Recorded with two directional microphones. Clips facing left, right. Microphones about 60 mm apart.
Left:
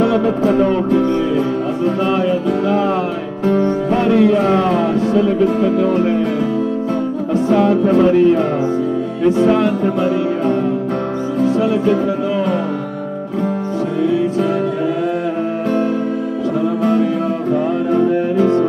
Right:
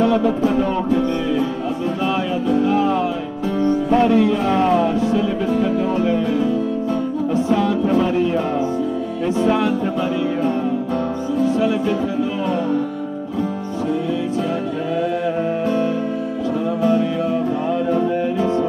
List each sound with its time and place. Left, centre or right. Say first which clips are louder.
0.0 s music: left 2 dB; left
2.4 s music: left 1 dB; left
7.5 s music: left 6 dB; left
9.9 s music: left 4 dB; left